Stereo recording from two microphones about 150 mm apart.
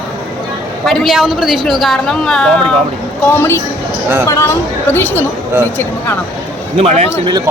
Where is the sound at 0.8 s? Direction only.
Centre (ahead or behind).